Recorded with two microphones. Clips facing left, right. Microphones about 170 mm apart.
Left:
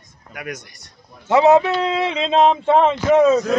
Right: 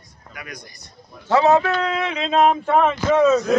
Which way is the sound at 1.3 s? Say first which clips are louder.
Left 3 dB; 20° left (ahead or behind).